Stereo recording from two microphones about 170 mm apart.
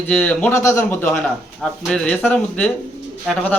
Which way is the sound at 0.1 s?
5° left (ahead or behind).